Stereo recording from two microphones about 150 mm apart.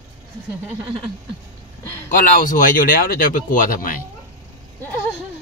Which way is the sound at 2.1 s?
60° left (ahead or behind).